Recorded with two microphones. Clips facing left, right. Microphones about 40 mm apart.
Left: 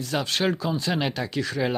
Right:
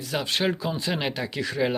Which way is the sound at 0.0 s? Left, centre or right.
Centre.